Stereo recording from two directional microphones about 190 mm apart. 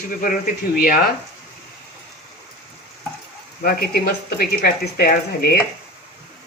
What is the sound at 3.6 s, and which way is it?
Speech, 55° left (ahead or behind).